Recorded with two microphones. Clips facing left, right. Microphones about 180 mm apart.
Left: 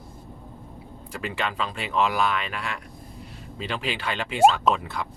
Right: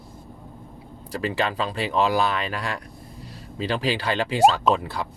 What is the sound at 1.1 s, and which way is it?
Speech, 35° right (ahead or behind).